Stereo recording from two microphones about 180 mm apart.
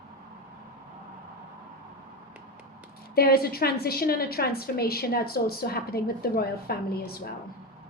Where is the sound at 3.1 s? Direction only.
60° left (ahead or behind).